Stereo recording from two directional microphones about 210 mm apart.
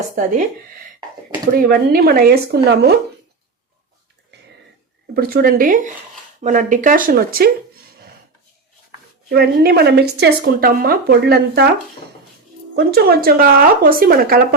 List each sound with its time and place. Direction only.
1.5 s a woman's voice: 45° right (ahead or behind)
5.1 s a woman's voice: 45° right (ahead or behind)
9.3 s a woman's voice: 50° right (ahead or behind)
12.7 s a woman's voice: 45° right (ahead or behind)